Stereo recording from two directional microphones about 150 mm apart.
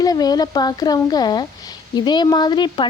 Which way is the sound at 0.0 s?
25° left (ahead or behind).